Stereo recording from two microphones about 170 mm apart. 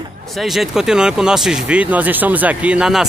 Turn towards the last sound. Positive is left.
turn(degrees=-5)  # may be behind; listen again after turning